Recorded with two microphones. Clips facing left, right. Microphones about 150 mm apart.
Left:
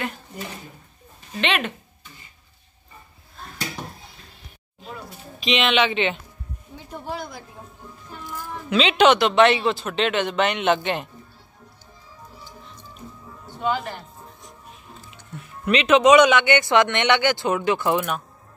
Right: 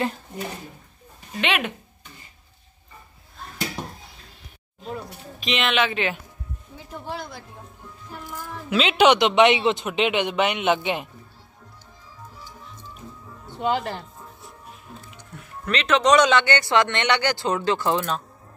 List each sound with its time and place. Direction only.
1.4 s speech: 10° right (ahead or behind)
5.4 s speech: centre (ahead or behind)
8.6 s speech: 5° right (ahead or behind)
13.6 s speech: 25° right (ahead or behind)
15.6 s speech: 15° left (ahead or behind)